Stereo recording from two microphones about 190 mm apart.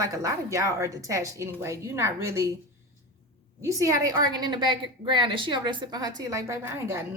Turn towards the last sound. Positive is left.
turn(degrees=-15)  # may be behind; listen again after turning